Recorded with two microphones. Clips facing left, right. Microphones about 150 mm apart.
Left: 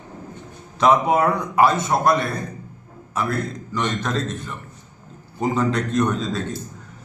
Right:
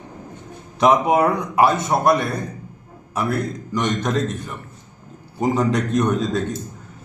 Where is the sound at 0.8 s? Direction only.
10° right (ahead or behind).